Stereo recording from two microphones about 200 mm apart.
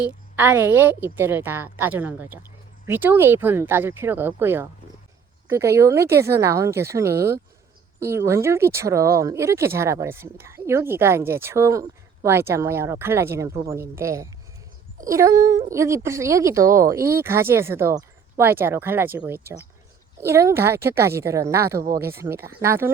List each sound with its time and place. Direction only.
0.3 s speech: 10° right (ahead or behind)